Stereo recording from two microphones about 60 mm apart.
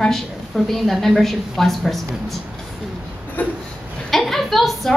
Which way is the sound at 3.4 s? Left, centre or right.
Left.